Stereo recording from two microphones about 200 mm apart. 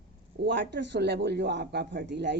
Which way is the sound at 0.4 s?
60° right (ahead or behind).